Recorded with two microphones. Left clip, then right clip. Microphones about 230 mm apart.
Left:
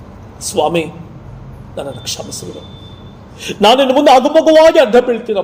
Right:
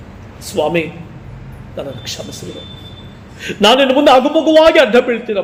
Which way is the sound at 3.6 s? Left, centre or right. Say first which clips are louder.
Left 1 dB; left.